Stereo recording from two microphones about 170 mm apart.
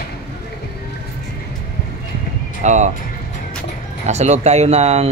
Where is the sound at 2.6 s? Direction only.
45° right (ahead or behind).